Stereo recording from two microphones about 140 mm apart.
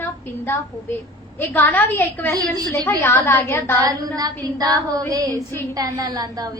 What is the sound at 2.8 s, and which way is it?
Speech, 15° left (ahead or behind).